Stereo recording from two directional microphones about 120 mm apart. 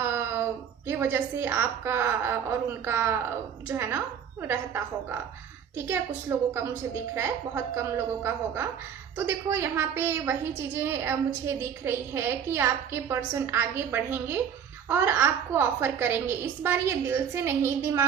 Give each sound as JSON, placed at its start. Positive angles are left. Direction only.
{"t": 0.0, "sound": "a woman's voice", "side_deg": -20}
{"t": 5.7, "sound": "a woman's voice", "side_deg": -20}